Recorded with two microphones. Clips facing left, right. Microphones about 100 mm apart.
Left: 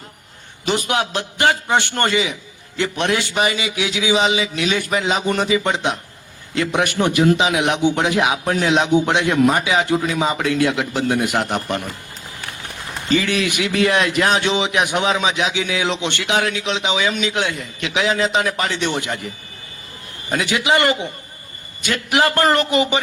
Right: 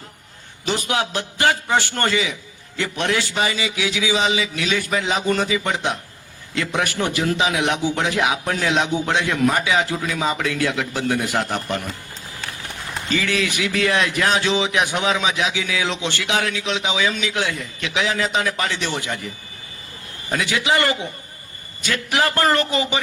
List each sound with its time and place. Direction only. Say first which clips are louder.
0.6 s a man's voice: left 2 dB; 20° left (ahead or behind)
13.1 s a man's voice: left 4 dB; 20° left (ahead or behind)
20.3 s a man's voice: left 2 dB; 20° left (ahead or behind)